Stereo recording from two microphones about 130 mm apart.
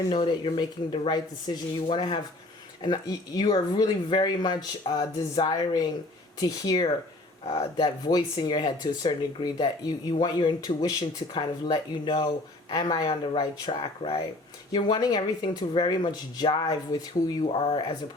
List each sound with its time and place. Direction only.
0.1 s speech: 35° left (ahead or behind)
7.4 s speech: 55° left (ahead or behind)
7.8 s speech: 30° left (ahead or behind)
17.5 s speech: 45° left (ahead or behind)